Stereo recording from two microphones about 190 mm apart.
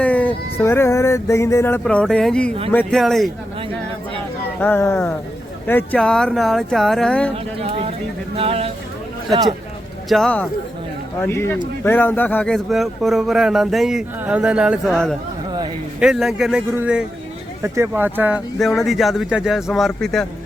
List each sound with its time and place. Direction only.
0.0 s a sound: 10° left (ahead or behind)
2.7 s speech: centre (ahead or behind)
4.6 s a sound: 10° left (ahead or behind)
5.6 s speech: 10° left (ahead or behind)
7.7 s speech: 30° right (ahead or behind)
9.3 s speech: 20° right (ahead or behind)
10.1 s speech: 5° left (ahead or behind)
11.2 s a sound: 10° left (ahead or behind)
11.8 s speech: 10° left (ahead or behind)